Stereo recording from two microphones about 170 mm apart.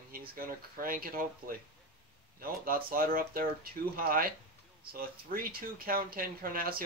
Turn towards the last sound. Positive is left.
turn(degrees=-60)  # may be behind; listen again after turning